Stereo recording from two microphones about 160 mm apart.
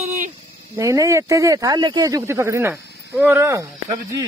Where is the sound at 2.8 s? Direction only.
90° left.